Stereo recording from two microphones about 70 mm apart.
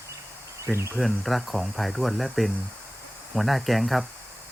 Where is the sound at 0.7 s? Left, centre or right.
Centre.